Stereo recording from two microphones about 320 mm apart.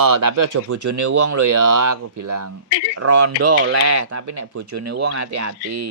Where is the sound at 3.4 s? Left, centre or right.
Right.